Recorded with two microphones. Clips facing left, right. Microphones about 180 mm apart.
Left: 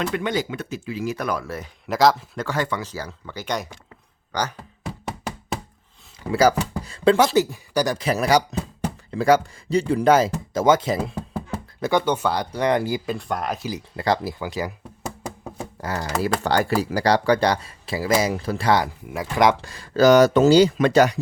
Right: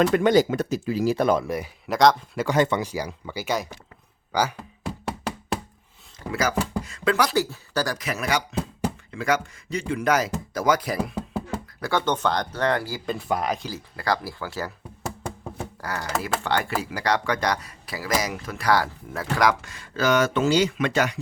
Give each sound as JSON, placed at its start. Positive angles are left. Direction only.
{"t": 0.0, "sound": "speech", "side_deg": -40}
{"t": 1.9, "sound": "speech", "side_deg": 0}
{"t": 2.4, "sound": "speech", "side_deg": -20}
{"t": 5.0, "sound": "knock", "side_deg": 0}
{"t": 6.8, "sound": "speech", "side_deg": 30}
{"t": 7.9, "sound": "speech", "side_deg": 30}
{"t": 13.1, "sound": "speech", "side_deg": -5}
{"t": 13.7, "sound": "speech", "side_deg": 20}
{"t": 15.5, "sound": "computer keyboard", "side_deg": 25}
{"t": 16.4, "sound": "speech", "side_deg": 40}
{"t": 19.5, "sound": "speech", "side_deg": 35}